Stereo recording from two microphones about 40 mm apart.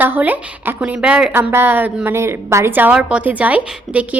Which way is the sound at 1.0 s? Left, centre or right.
Right.